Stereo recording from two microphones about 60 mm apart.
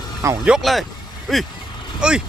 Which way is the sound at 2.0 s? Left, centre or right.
Centre.